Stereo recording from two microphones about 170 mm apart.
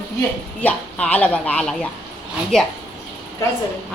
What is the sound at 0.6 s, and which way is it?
A woman's voice, 10° left (ahead or behind).